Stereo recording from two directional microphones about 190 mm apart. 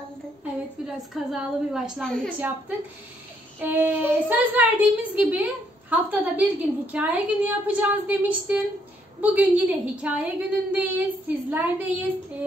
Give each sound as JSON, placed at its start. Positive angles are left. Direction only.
{"t": 0.8, "sound": "a woman's voice", "side_deg": -5}
{"t": 3.5, "sound": "a woman's voice", "side_deg": -10}